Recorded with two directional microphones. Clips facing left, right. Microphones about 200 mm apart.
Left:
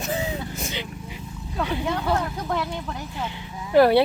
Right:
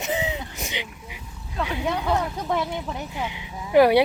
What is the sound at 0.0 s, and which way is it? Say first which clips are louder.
Vehicle: even; 20° right (ahead or behind).